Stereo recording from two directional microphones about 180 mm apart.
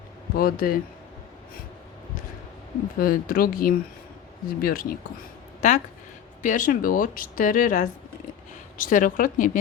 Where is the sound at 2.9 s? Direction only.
55° left (ahead or behind).